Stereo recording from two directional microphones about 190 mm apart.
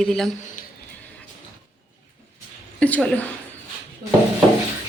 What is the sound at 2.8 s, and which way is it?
Speech, 5° left (ahead or behind).